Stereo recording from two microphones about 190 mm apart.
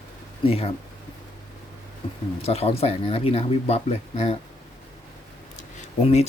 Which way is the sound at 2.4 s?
30° left (ahead or behind).